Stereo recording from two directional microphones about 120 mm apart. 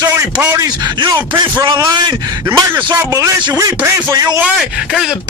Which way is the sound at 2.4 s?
20° right (ahead or behind).